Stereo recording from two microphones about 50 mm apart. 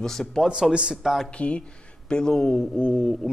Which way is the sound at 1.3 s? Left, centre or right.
Left.